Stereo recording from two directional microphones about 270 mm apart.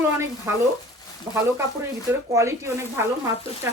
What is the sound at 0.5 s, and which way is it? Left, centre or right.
Speech, centre.